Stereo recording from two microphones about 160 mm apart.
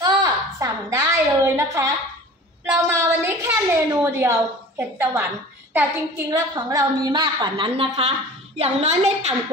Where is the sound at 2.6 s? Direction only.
15° right (ahead or behind).